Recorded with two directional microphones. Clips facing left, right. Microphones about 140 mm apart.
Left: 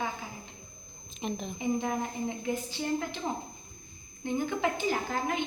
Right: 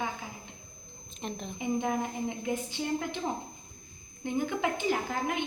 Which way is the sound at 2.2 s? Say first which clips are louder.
Even; 20° right (ahead or behind).